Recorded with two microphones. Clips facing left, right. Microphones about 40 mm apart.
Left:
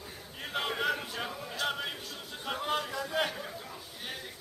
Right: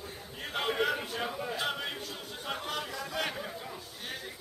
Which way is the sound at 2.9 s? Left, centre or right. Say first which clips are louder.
Left 3 dB; centre.